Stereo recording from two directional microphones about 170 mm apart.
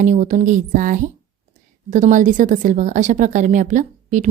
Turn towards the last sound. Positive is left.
turn(degrees=-45)  # may be behind; listen again after turning